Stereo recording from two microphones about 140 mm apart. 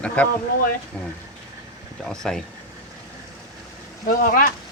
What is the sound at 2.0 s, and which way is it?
Speech, 5° left (ahead or behind).